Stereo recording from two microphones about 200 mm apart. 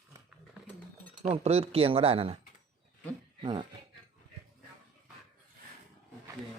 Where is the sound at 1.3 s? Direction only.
30° right (ahead or behind).